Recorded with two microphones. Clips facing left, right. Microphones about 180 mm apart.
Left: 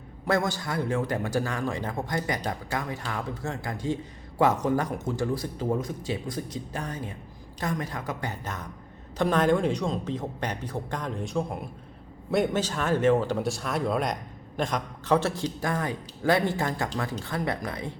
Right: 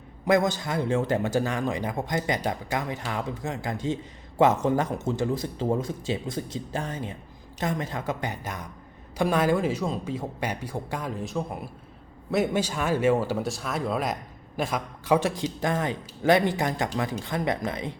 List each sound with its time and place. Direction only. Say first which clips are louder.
0.3 s speech: right 4 dB; 20° right (ahead or behind)
8.3 s speech: right 1 dB; 10° right (ahead or behind)